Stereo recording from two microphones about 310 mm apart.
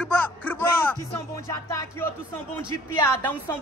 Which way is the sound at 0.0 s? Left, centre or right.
Centre.